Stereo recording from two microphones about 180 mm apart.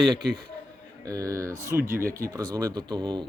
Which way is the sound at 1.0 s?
20° right (ahead or behind).